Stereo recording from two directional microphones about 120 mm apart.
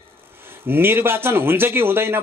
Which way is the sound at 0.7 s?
20° right (ahead or behind).